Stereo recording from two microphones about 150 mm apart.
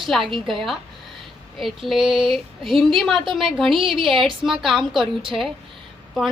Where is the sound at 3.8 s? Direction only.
35° right (ahead or behind).